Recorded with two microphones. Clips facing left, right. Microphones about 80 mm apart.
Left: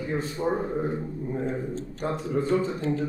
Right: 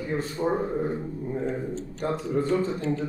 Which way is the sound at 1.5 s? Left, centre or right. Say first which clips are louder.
Even; left.